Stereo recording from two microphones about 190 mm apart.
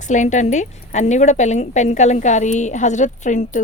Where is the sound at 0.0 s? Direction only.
40° left (ahead or behind).